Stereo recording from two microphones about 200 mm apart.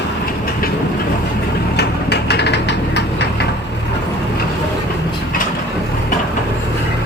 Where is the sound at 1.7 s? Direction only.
55° left (ahead or behind).